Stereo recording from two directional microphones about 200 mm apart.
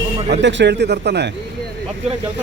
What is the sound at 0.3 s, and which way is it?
A man's voice, 60° right (ahead or behind).